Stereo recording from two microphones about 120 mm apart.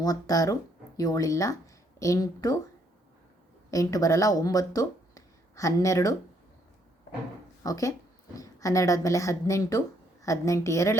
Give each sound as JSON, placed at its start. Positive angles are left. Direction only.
{"t": 0.0, "sound": "a woman's voice", "side_deg": 30}
{"t": 3.7, "sound": "speech", "side_deg": 30}
{"t": 7.6, "sound": "a woman's voice", "side_deg": 30}